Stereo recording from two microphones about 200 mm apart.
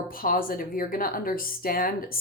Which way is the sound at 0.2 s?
45° left (ahead or behind).